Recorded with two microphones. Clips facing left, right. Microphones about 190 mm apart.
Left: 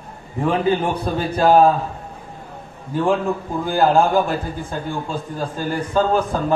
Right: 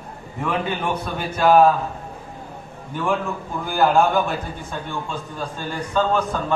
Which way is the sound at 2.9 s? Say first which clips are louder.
Left 5 dB; 30° left (ahead or behind).